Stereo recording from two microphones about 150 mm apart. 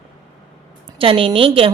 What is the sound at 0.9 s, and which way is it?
Speech, 35° right (ahead or behind).